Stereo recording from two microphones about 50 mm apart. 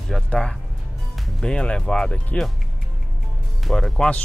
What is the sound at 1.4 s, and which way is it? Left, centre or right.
Speech, centre.